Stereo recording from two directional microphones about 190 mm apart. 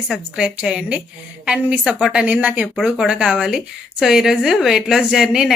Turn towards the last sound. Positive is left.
turn(degrees=-5)  # may be behind; listen again after turning